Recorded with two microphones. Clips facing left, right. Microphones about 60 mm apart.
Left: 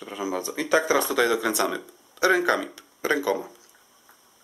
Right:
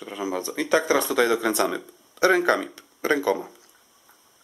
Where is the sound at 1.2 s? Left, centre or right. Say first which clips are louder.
Right 1 dB; right.